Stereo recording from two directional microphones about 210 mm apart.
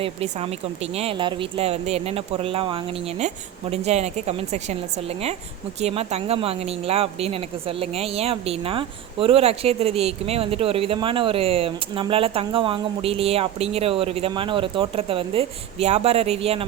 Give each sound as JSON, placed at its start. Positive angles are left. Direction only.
{"t": 0.0, "sound": "speech", "side_deg": -30}